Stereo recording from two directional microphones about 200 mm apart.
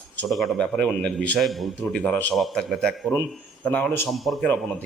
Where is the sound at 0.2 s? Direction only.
Centre (ahead or behind).